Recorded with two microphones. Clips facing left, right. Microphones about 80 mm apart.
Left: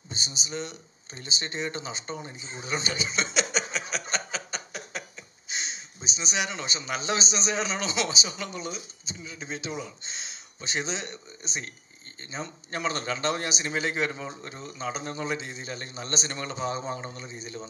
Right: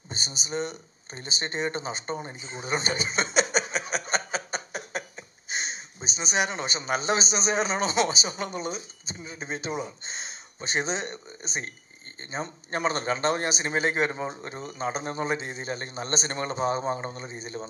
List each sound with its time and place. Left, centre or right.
0.1 s speech: right
3.5 s a sound: right
12.2 s speech: right